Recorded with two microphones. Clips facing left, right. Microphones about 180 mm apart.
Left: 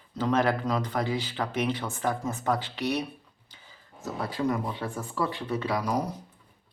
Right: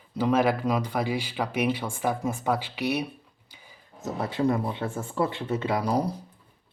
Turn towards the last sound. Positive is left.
turn(degrees=-35)  # may be behind; listen again after turning